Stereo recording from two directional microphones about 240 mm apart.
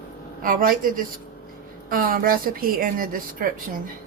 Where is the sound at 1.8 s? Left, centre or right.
Right.